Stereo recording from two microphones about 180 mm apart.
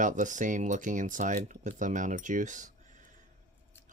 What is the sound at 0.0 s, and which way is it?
Speech, 45° right (ahead or behind).